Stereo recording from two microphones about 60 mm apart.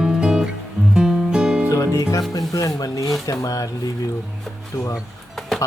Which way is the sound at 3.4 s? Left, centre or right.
Left.